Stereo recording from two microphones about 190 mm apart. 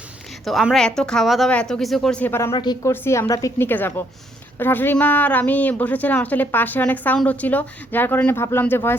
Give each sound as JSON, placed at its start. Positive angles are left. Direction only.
{"t": 0.4, "sound": "speech", "side_deg": 0}
{"t": 2.5, "sound": "a woman's voice", "side_deg": 25}